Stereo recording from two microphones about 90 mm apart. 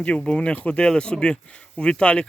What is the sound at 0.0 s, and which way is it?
Speech, 10° left (ahead or behind).